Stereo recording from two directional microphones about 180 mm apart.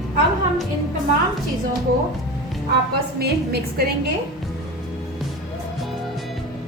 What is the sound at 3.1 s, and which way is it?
Music, 60° right (ahead or behind).